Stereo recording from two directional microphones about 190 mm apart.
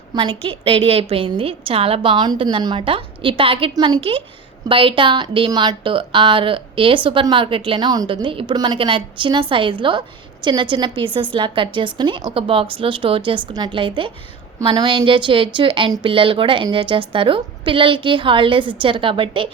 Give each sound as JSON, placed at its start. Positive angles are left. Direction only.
{"t": 0.1, "sound": "a woman's voice", "side_deg": -25}